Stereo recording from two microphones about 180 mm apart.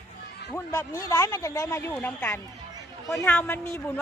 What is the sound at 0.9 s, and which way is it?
Speech, 15° left (ahead or behind).